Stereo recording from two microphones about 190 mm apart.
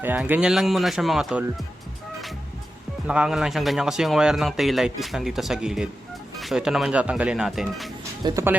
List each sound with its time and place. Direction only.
0.0 s a man's voice: 10° right (ahead or behind)
3.1 s a man's voice: 5° right (ahead or behind)
8.2 s speech: 20° right (ahead or behind)